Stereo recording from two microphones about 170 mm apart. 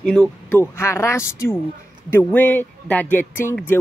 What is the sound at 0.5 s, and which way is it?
Speech, 15° left (ahead or behind).